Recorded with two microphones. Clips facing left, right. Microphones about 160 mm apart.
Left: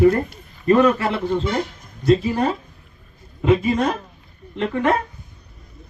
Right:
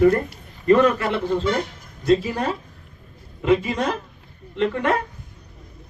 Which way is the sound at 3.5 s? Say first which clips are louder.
Left 2 dB; 35° left (ahead or behind).